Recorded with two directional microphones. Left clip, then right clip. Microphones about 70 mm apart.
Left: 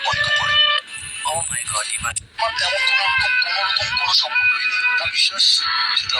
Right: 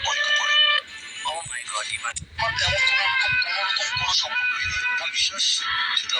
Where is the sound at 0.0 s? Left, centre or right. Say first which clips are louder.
Left 3 dB; left.